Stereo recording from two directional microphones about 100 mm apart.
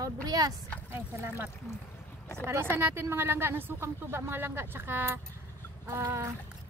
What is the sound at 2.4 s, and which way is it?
A woman's voice, 25° right (ahead or behind).